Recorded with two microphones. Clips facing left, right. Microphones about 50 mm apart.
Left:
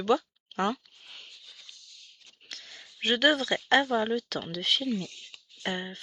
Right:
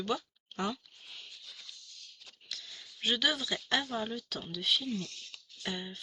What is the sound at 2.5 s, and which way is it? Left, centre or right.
Sniff, left.